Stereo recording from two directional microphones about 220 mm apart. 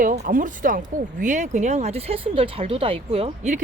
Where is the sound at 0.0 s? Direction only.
35° right (ahead or behind).